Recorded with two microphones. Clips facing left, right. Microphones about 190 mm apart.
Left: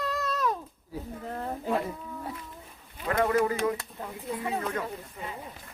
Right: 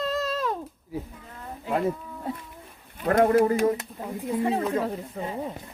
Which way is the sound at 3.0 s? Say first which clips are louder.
Right 6 dB; 50° right (ahead or behind).